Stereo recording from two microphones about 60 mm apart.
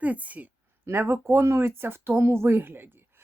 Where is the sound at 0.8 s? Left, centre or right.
Right.